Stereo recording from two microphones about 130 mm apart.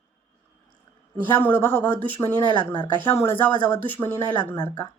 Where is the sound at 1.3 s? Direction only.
15° left (ahead or behind).